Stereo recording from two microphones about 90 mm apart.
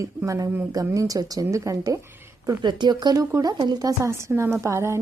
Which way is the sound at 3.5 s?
60° right (ahead or behind).